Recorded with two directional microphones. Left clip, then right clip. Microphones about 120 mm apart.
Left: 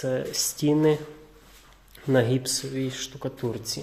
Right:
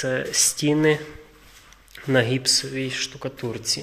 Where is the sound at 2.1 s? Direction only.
15° left (ahead or behind).